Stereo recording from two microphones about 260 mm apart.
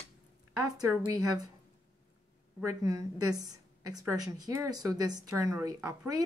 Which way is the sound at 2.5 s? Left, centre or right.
Centre.